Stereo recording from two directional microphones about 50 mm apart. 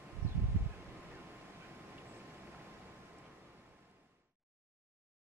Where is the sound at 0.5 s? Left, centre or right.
Right.